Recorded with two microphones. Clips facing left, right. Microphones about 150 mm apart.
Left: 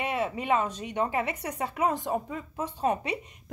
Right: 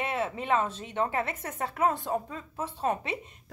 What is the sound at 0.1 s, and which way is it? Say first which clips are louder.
A woman's voice: left 2 dB; 10° left (ahead or behind).